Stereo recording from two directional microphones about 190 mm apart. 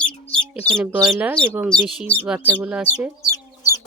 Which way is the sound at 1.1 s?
10° right (ahead or behind).